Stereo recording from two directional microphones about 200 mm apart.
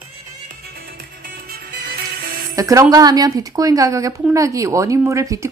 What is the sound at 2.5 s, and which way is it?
A woman's voice, 15° right (ahead or behind).